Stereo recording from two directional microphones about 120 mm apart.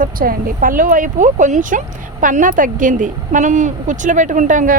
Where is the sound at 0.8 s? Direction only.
90° right.